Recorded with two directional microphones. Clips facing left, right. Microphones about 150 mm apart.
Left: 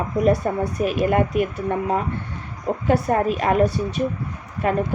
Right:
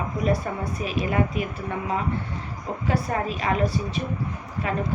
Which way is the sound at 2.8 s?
50° left (ahead or behind).